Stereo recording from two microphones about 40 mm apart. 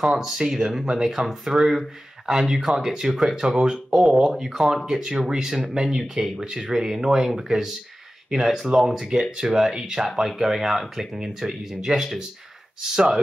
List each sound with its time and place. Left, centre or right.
0.1 s speech: centre
1.2 s speech: right
1.6 s speech: centre